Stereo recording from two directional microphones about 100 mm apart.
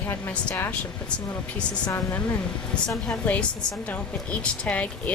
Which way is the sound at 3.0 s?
10° left (ahead or behind).